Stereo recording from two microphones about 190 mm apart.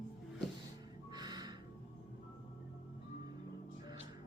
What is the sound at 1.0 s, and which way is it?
Music, 20° right (ahead or behind).